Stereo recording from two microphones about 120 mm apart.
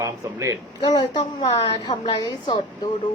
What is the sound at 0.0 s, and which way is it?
Speech, 25° right (ahead or behind).